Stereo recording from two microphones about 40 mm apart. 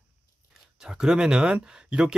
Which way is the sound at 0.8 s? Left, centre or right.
Centre.